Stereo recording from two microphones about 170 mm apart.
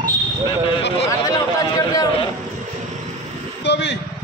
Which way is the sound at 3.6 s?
85° left.